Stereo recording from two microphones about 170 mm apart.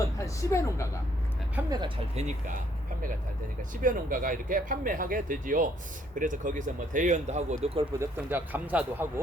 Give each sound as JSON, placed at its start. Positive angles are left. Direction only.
{"t": 0.3, "sound": "speech", "side_deg": 15}
{"t": 2.1, "sound": "speech", "side_deg": -45}
{"t": 7.9, "sound": "speech", "side_deg": -15}